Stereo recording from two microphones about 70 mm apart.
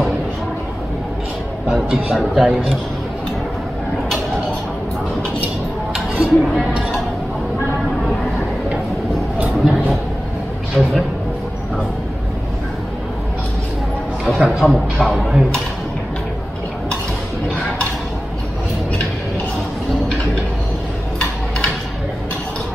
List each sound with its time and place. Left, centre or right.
1.7 s speech: centre
5.9 s a sound: centre
9.4 s a sound: right
10.8 s speech: centre
14.6 s speech: left
15.0 s speech: centre